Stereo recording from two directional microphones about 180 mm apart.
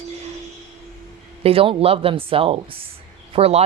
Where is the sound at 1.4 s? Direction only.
30° right (ahead or behind).